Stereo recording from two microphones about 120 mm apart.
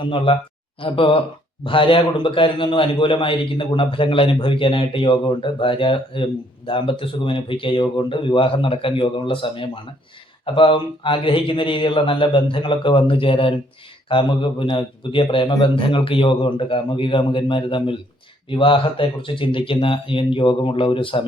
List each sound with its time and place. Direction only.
0.0 s a man's voice: 45° left (ahead or behind)